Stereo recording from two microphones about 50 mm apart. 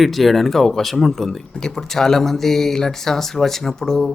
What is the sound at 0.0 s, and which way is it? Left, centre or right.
Speech, centre.